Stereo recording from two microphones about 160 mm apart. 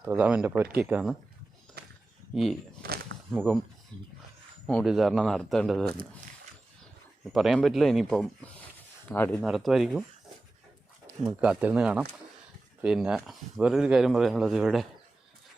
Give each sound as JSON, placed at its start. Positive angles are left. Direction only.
{"t": 0.0, "sound": "speech", "side_deg": -5}
{"t": 1.8, "sound": "a sound", "side_deg": -80}
{"t": 2.3, "sound": "speech", "side_deg": 0}
{"t": 2.8, "sound": "a sound", "side_deg": -75}
{"t": 3.3, "sound": "speech", "side_deg": 0}
{"t": 3.9, "sound": "speech", "side_deg": -30}
{"t": 4.6, "sound": "speech", "side_deg": 0}
{"t": 7.3, "sound": "speech", "side_deg": 0}
{"t": 9.0, "sound": "speech", "side_deg": 10}
{"t": 9.4, "sound": "speech", "side_deg": 0}
{"t": 11.3, "sound": "speech", "side_deg": -5}